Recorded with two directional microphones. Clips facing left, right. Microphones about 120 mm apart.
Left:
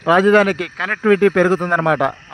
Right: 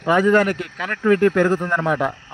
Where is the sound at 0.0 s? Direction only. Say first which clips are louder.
Left 4 dB; 90° left.